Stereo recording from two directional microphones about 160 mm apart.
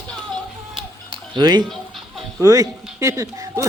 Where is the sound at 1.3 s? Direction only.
25° right (ahead or behind).